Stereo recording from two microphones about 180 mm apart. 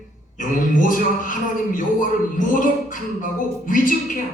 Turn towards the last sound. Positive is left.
turn(degrees=50)  # may be behind; listen again after turning